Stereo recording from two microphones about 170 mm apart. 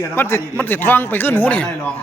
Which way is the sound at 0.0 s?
15° left (ahead or behind).